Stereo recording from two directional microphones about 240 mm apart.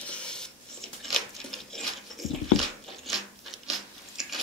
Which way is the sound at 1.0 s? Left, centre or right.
Centre.